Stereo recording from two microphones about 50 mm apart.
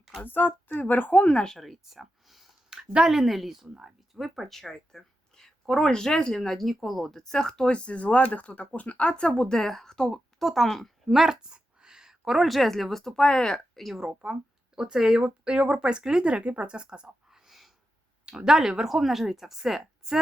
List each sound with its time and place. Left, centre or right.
0.3 s speech: left
1.5 s speech: centre
2.6 s a sound: centre
3.1 s a woman's voice: centre
7.7 s speech: left
10.4 s a woman's voice: centre
11.3 s a sound: centre
12.4 s speech: centre
14.0 s a woman's voice: centre
17.2 s a sound: centre
18.3 s a woman's voice: centre